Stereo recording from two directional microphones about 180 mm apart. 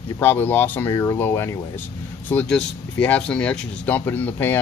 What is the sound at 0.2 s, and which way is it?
Speech, 10° left (ahead or behind).